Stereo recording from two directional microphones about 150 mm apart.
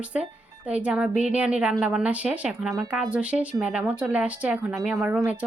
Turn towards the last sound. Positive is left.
turn(degrees=-5)  # may be behind; listen again after turning